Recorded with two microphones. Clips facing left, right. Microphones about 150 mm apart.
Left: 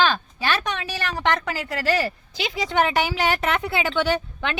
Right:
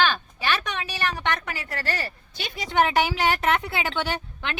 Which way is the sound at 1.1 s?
90° left.